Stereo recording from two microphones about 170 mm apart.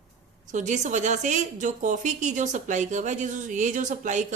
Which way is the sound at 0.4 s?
45° right (ahead or behind).